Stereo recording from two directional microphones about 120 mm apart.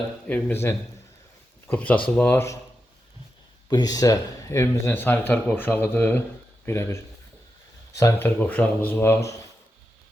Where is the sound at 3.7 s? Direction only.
35° left (ahead or behind).